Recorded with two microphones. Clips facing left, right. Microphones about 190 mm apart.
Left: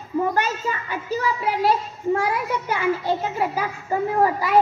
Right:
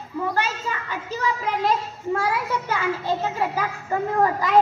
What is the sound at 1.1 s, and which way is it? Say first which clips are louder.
A child's voice: left 2 dB; 10° left (ahead or behind).